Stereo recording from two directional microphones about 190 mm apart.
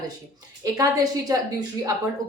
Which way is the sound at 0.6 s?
20° right (ahead or behind).